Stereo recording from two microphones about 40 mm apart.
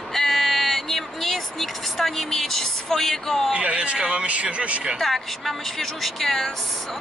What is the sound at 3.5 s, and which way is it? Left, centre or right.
Speech, right.